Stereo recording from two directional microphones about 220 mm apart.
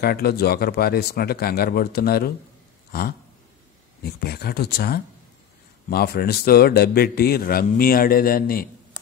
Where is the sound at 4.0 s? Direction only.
45° left (ahead or behind).